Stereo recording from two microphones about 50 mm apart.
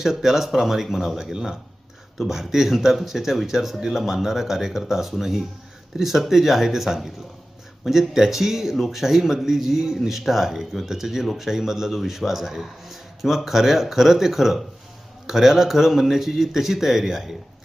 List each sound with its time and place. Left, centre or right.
0.0 s a man's voice: centre